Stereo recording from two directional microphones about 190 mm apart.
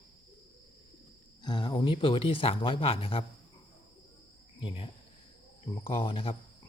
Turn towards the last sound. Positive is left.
turn(degrees=30)  # may be behind; listen again after turning